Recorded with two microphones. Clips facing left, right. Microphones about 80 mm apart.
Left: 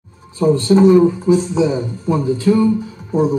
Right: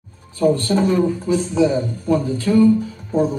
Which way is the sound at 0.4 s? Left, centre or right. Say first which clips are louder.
Left 5 dB; centre.